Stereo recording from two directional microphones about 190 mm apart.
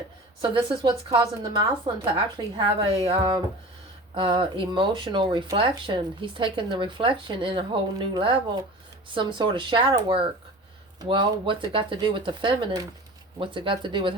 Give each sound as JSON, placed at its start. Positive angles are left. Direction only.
{"t": 0.5, "sound": "speech", "side_deg": -25}